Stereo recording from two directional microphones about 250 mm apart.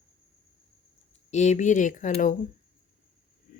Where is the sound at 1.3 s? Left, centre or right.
Left.